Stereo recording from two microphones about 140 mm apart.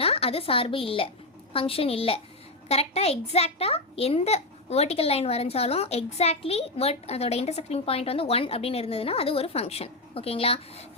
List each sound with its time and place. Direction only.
0.0 s a child's voice: 45° left (ahead or behind)